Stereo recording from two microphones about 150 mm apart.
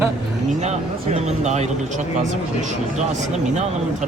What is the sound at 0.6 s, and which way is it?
Speech, 50° right (ahead or behind).